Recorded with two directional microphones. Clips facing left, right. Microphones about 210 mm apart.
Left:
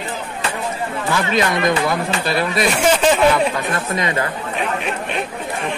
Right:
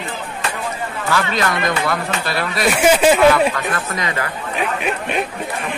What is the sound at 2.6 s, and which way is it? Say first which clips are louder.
Speech: right 3 dB; 5° right (ahead or behind).